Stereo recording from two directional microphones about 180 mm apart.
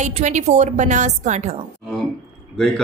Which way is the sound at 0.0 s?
40° right (ahead or behind).